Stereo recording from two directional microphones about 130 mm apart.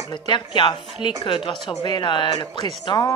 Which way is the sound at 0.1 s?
40° left (ahead or behind).